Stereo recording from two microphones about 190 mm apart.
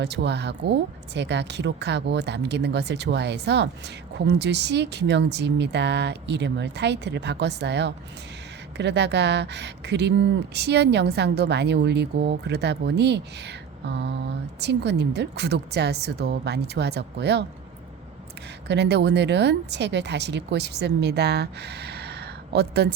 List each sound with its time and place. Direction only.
0.0 s speech: 65° right (ahead or behind)
18.7 s speech: 60° right (ahead or behind)